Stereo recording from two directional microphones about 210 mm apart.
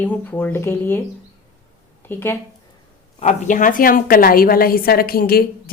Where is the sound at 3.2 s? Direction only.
35° left (ahead or behind).